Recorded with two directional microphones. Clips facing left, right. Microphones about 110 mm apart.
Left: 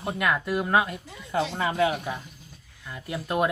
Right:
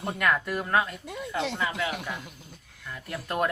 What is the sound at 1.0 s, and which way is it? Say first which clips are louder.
Speech: left 3 dB; 65° right (ahead or behind).